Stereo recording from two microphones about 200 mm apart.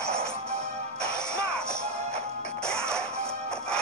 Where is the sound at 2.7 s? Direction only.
5° left (ahead or behind).